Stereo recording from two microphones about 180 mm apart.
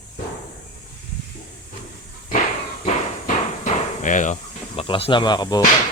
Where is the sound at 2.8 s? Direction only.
40° left (ahead or behind).